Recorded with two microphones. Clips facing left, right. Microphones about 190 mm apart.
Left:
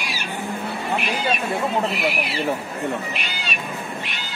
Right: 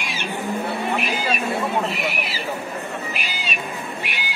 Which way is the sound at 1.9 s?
Centre (ahead or behind).